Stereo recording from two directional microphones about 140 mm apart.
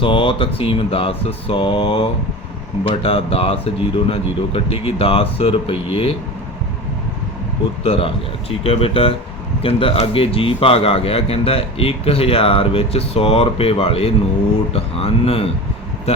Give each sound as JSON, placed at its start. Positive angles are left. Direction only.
{"t": 0.0, "sound": "mantra", "side_deg": 40}
{"t": 2.8, "sound": "a man's voice", "side_deg": 40}
{"t": 7.9, "sound": "a man's voice", "side_deg": 40}